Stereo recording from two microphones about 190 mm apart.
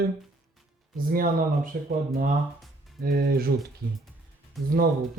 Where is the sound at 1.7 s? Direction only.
50° right (ahead or behind).